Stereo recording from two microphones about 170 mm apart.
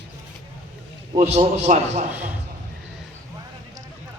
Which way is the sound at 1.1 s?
40° right (ahead or behind).